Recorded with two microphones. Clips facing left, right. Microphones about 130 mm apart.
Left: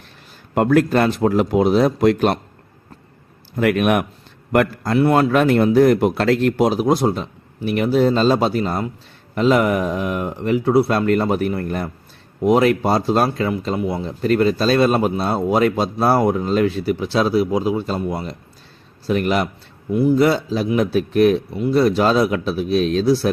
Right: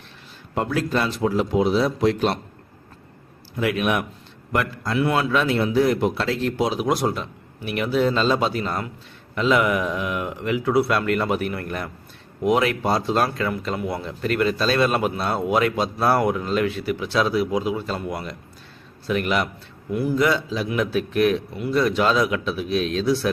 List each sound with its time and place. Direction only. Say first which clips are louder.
0.5 s a man's voice: left 8 dB; 55° left (ahead or behind)
3.6 s a man's voice: left 6 dB; 55° left (ahead or behind)
6.8 s a man's voice: left 5 dB; 25° left (ahead or behind)
7.1 s speech: left 5 dB; 35° left (ahead or behind)
19.9 s a man's voice: left 7 dB; 25° left (ahead or behind)
20.1 s speech: left 4 dB; 35° left (ahead or behind)